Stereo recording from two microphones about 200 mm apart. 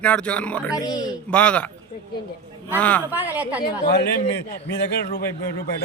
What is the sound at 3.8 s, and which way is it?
A man's voice, 55° left (ahead or behind).